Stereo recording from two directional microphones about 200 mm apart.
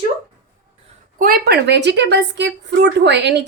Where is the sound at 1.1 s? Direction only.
45° right (ahead or behind).